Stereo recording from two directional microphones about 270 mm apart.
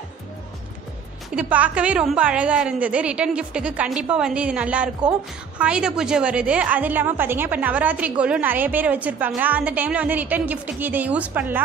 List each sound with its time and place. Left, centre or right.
1.3 s a woman's voice: centre